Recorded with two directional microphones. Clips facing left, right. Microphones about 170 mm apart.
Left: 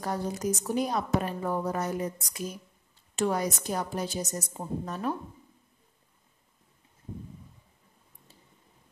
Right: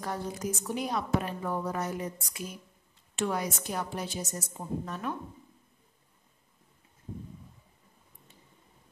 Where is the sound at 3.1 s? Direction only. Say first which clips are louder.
Left 3 dB; 40° left (ahead or behind).